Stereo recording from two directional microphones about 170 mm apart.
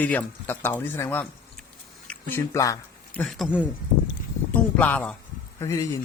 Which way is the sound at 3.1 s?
Centre (ahead or behind).